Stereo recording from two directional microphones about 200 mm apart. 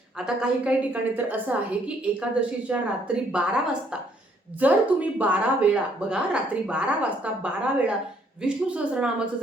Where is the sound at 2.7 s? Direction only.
5° right (ahead or behind).